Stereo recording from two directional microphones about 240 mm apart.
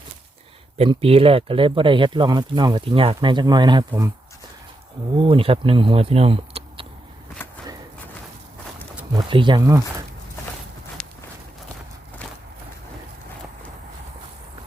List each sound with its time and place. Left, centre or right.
0.8 s speech: right
5.1 s speech: right
9.1 s speech: centre
11.0 s walk: centre